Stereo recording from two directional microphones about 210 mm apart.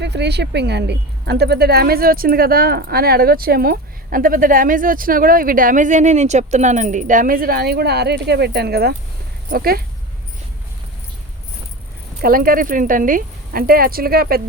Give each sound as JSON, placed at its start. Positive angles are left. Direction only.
{"t": 0.0, "sound": "speech", "side_deg": -55}
{"t": 12.2, "sound": "speech", "side_deg": -45}